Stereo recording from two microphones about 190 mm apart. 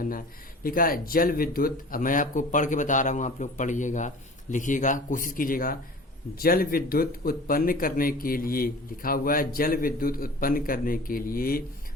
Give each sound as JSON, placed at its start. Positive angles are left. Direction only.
{"t": 0.0, "sound": "speech", "side_deg": 50}